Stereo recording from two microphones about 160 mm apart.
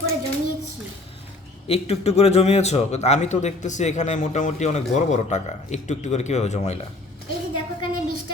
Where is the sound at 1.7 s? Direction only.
40° left (ahead or behind).